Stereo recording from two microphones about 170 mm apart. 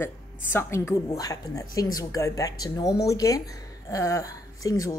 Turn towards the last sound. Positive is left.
turn(degrees=20)  # may be behind; listen again after turning